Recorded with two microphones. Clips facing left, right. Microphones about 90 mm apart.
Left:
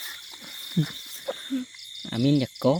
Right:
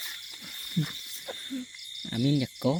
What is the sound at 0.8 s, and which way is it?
Speech, 70° left (ahead or behind).